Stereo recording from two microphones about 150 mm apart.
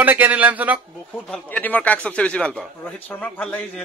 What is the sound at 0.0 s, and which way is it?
Speech, 10° right (ahead or behind).